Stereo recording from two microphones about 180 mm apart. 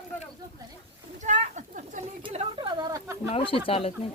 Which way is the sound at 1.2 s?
45° right (ahead or behind).